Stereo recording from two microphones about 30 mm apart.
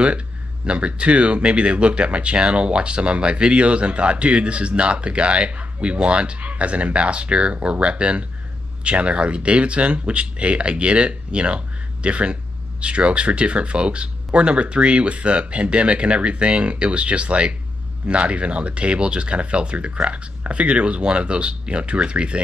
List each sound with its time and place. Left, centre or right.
0.7 s speech: right
6.4 s speech: right